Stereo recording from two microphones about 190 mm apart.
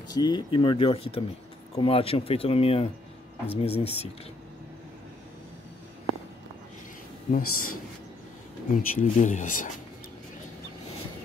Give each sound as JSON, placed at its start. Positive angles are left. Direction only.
{"t": 0.1, "sound": "speech", "side_deg": 20}
{"t": 7.2, "sound": "speech", "side_deg": 45}
{"t": 8.7, "sound": "speech", "side_deg": 40}